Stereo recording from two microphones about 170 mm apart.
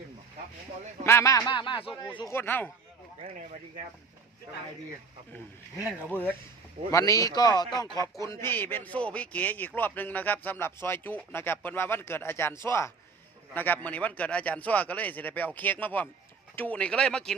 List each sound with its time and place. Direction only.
1.0 s speech: 15° left (ahead or behind)
2.3 s a man's voice: 10° left (ahead or behind)
6.1 s a man's voice: 10° left (ahead or behind)